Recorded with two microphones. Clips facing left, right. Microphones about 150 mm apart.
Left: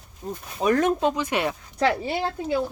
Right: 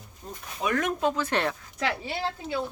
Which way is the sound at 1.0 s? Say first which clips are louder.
Left 2 dB; 15° left (ahead or behind).